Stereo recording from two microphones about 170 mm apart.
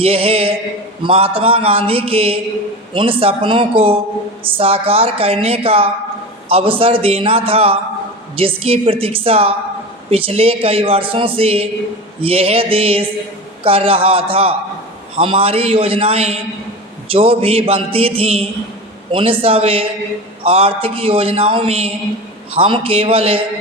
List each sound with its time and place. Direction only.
0.0 s speech: 35° right (ahead or behind)